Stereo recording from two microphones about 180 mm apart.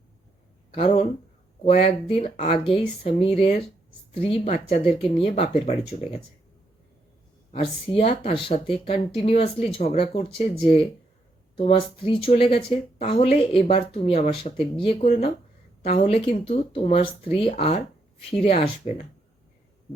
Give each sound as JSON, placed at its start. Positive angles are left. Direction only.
{"t": 0.7, "sound": "speech", "side_deg": 30}
{"t": 7.5, "sound": "speech", "side_deg": 35}
{"t": 11.5, "sound": "speech", "side_deg": 30}